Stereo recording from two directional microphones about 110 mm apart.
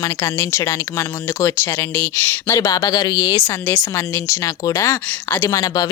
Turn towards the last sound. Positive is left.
turn(degrees=30)  # may be behind; listen again after turning